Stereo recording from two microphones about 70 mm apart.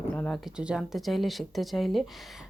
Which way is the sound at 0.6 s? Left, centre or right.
Centre.